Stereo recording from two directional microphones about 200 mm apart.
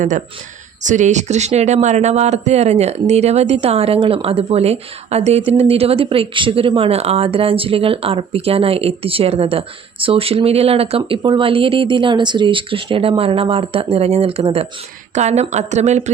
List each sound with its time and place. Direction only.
0.8 s speech: 40° right (ahead or behind)